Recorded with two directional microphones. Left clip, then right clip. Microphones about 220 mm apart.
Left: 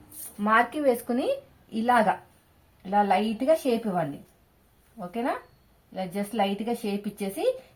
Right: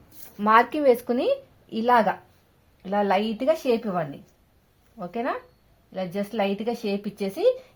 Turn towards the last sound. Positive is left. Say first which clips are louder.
# right 5 dB
turn(degrees=-35)  # may be behind; listen again after turning